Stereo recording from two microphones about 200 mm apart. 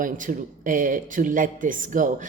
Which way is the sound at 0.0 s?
40° right (ahead or behind).